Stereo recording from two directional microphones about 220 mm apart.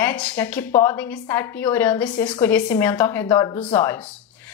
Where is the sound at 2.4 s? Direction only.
10° left (ahead or behind).